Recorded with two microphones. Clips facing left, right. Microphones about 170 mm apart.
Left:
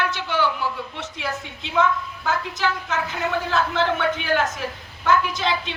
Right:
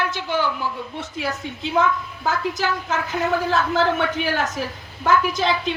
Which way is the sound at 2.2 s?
35° right (ahead or behind).